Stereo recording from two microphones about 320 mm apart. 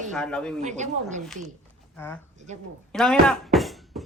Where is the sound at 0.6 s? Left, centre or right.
Right.